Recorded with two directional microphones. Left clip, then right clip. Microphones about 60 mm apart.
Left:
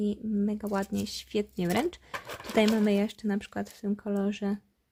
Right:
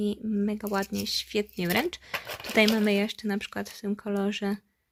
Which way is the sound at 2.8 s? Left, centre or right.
Left.